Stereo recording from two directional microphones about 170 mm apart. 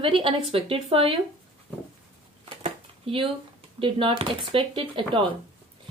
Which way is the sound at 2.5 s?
30° right (ahead or behind).